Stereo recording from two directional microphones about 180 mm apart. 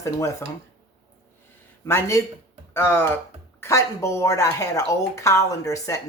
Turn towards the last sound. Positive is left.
turn(degrees=20)  # may be behind; listen again after turning